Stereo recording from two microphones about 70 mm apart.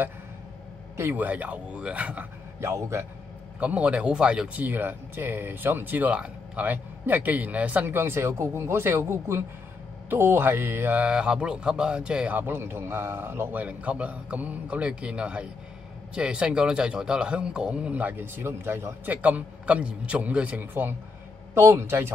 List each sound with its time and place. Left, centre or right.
1.1 s speech: right
2.6 s a man's voice: right
3.5 s a man's voice: centre
4.6 s speech: right
13.6 s a man's voice: right
21.5 s a man's voice: right